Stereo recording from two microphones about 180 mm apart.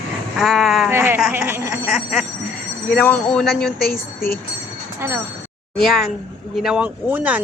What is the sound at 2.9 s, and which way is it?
Speech, 5° left (ahead or behind).